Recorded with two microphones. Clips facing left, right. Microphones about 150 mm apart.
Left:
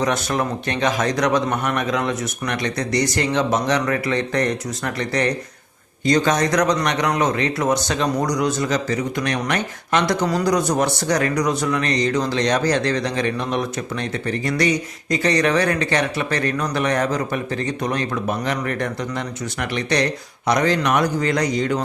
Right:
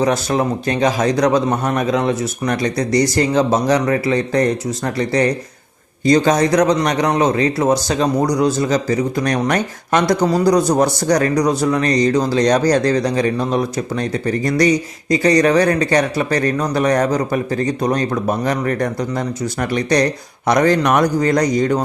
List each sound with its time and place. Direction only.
0.0 s a man's voice: 30° right (ahead or behind)